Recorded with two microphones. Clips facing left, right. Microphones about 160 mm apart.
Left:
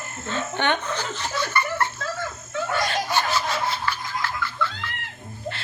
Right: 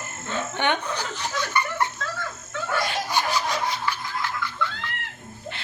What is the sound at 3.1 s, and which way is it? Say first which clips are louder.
Laughter: left 1 dB; 15° right (ahead or behind).